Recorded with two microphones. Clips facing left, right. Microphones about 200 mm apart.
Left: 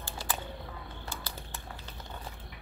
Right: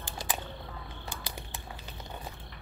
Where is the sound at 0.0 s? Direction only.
15° right (ahead or behind).